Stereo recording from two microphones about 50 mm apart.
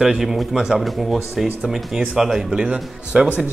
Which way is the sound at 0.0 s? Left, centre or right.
Centre.